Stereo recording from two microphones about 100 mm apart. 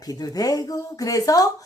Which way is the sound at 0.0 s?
40° left (ahead or behind).